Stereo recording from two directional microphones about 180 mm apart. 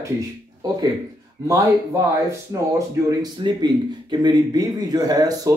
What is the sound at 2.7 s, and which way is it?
Speech, 20° right (ahead or behind).